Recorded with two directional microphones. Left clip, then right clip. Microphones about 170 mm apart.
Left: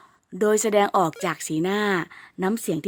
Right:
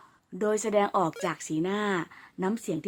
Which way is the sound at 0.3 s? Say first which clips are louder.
Left 6 dB; 30° left (ahead or behind).